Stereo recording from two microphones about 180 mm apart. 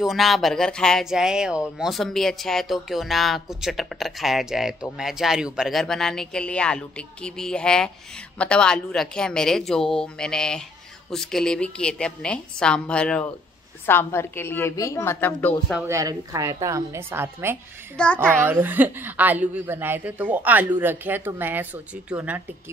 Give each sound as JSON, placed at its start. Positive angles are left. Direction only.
{"t": 0.0, "sound": "a woman's voice", "side_deg": 0}
{"t": 15.9, "sound": "a woman's voice", "side_deg": -20}
{"t": 17.9, "sound": "speech", "side_deg": 5}
{"t": 18.4, "sound": "a woman's voice", "side_deg": -10}